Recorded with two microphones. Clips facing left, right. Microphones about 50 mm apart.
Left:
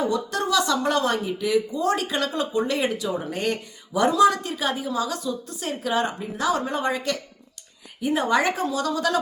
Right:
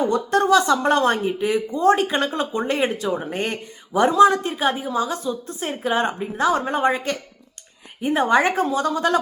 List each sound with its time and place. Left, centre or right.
0.0 s speech: right